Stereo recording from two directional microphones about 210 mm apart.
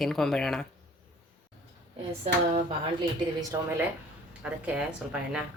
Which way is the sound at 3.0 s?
15° right (ahead or behind).